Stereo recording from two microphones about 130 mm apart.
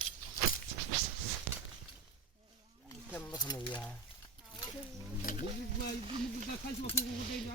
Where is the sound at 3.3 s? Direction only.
30° left (ahead or behind).